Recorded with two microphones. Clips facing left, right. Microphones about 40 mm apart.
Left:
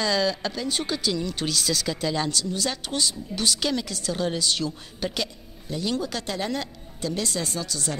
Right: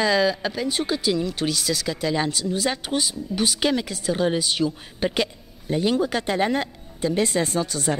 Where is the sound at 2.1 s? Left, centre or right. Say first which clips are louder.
Right 3 dB; centre.